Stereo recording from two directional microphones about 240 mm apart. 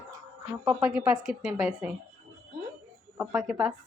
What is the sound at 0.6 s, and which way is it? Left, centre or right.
A woman's voice, centre.